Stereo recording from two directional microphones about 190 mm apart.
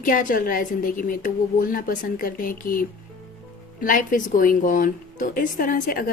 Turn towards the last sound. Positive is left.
turn(degrees=50)  # may be behind; listen again after turning